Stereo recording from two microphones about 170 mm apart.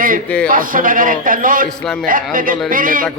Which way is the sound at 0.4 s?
55° right (ahead or behind).